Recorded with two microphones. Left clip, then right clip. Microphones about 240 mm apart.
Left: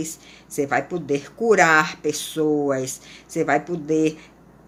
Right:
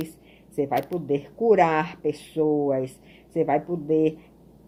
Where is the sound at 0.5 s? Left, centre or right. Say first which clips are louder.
Left 3 dB; centre.